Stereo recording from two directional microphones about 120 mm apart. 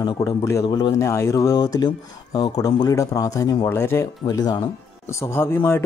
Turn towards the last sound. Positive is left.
turn(degrees=20)  # may be behind; listen again after turning